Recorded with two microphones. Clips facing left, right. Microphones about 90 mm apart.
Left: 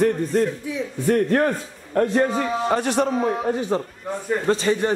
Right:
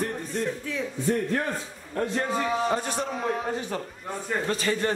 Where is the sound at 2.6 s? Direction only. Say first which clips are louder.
Left 7 dB; 75° left (ahead or behind).